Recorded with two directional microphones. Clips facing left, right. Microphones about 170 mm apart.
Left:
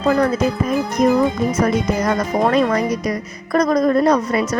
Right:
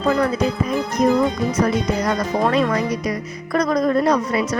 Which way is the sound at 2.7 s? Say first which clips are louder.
Left 2 dB; 45° left (ahead or behind).